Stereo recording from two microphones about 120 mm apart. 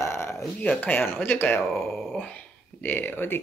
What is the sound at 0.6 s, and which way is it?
Speech, 15° left (ahead or behind).